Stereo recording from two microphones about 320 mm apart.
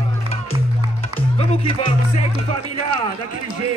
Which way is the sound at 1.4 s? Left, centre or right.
Centre.